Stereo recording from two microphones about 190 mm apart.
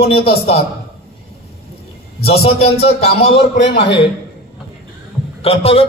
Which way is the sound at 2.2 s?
35° left (ahead or behind).